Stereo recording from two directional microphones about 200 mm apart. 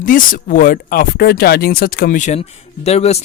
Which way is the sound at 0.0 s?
45° left (ahead or behind).